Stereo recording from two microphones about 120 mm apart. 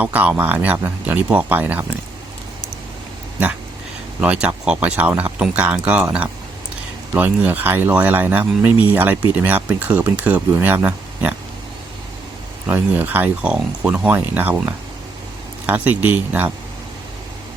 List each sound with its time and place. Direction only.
0.0 s speech: 10° right (ahead or behind)
4.2 s speech: 10° right (ahead or behind)
12.6 s speech: 15° right (ahead or behind)